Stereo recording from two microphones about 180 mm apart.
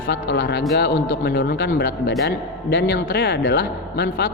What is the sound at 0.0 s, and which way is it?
Speech, 70° left (ahead or behind).